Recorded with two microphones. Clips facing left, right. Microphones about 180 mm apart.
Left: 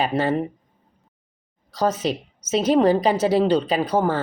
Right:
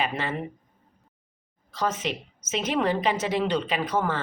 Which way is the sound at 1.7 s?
35° left (ahead or behind).